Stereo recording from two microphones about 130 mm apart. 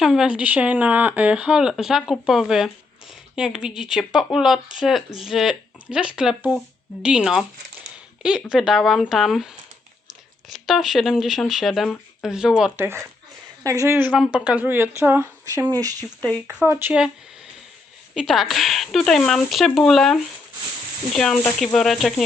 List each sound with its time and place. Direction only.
0.0 s speech: 5° right (ahead or behind)
10.5 s speech: centre (ahead or behind)
12.7 s speech: 20° right (ahead or behind)
14.2 s speech: 5° right (ahead or behind); by 16.0 s 25° right (ahead or behind)
16.8 s speech: 15° right (ahead or behind)
18.1 s speech: centre (ahead or behind)